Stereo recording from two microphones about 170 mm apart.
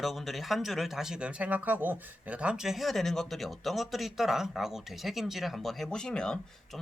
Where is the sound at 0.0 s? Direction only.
Centre (ahead or behind).